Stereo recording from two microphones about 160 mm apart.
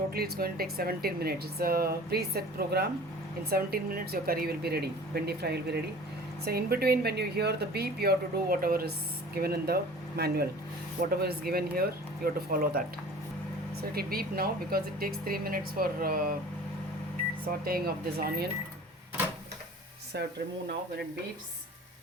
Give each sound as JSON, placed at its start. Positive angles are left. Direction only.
{"t": 0.1, "sound": "speech", "side_deg": -70}
{"t": 3.5, "sound": "a woman's voice", "side_deg": -70}
{"t": 13.9, "sound": "speech", "side_deg": -70}
{"t": 17.7, "sound": "speech", "side_deg": -70}
{"t": 20.1, "sound": "speech", "side_deg": -90}